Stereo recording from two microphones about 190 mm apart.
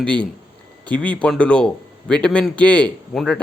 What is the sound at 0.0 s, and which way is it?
A man's voice, 5° left (ahead or behind).